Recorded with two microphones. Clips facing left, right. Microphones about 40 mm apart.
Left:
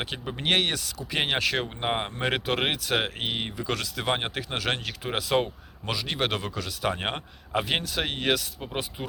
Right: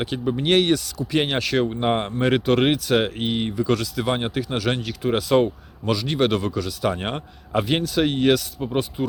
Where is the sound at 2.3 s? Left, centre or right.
Left.